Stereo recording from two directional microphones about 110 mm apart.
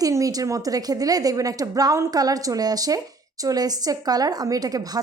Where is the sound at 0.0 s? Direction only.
30° right (ahead or behind).